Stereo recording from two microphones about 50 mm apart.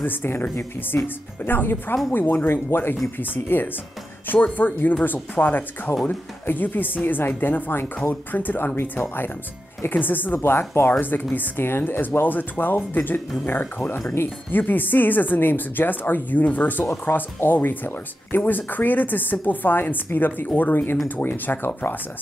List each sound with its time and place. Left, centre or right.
0.0 s speech: left
10.7 s speech: left
11.0 s speech: left
14.5 s speech: left